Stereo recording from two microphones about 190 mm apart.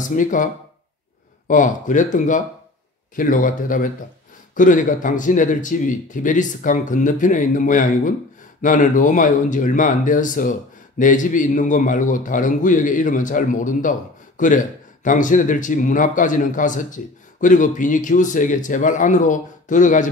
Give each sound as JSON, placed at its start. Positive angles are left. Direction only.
{"t": 0.0, "sound": "speech", "side_deg": 45}
{"t": 1.5, "sound": "speech", "side_deg": 40}